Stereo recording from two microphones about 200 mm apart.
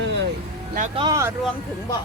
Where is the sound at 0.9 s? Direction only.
20° right (ahead or behind).